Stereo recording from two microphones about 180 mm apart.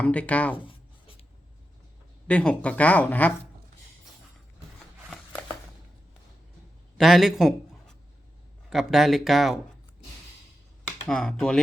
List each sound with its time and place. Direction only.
0.0 s speech: 5° left (ahead or behind)
0.5 s writing: 30° left (ahead or behind)
2.2 s speech: 5° left (ahead or behind)
7.0 s speech: centre (ahead or behind)
11.0 s speech: 5° left (ahead or behind)